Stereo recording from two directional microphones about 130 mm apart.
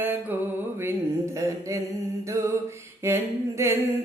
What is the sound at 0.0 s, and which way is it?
Mantra, 15° right (ahead or behind).